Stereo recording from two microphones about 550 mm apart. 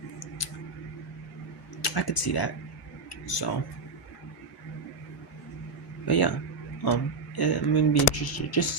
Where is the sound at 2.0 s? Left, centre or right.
Left.